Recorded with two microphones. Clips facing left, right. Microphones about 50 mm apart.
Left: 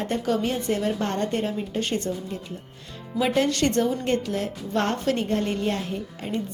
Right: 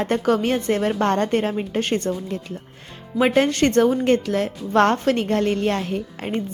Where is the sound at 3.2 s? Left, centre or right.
Right.